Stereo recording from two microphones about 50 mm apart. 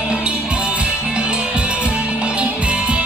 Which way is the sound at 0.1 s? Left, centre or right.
Right.